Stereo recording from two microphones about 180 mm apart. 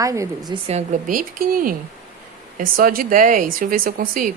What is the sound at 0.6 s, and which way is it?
Speech, 45° right (ahead or behind).